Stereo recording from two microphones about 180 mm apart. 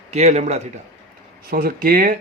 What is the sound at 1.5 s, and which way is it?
Speech, 55° right (ahead or behind).